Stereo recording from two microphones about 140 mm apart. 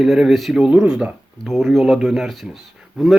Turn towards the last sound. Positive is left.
turn(degrees=0)  # may be behind; listen again after turning